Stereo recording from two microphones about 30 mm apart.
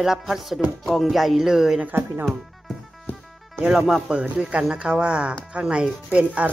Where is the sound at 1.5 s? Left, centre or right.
Centre.